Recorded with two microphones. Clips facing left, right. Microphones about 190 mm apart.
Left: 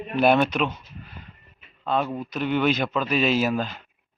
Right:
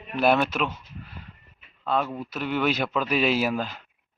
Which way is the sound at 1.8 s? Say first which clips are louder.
Left 1 dB; 5° right (ahead or behind).